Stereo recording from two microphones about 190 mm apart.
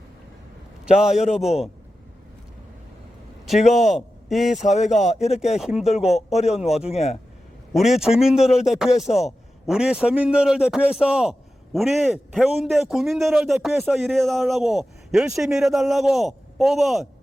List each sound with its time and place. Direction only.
0.9 s a man's voice: 5° right (ahead or behind)
3.7 s a man's voice: centre (ahead or behind)
4.6 s speech: 35° left (ahead or behind)
5.5 s a man's voice: centre (ahead or behind)
6.9 s speech: 35° left (ahead or behind)
7.7 s a man's voice: centre (ahead or behind)